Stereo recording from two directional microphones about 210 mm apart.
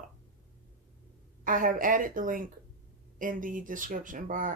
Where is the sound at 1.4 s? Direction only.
40° right (ahead or behind).